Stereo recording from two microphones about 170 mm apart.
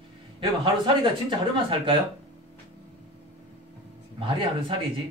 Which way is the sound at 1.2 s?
30° right (ahead or behind).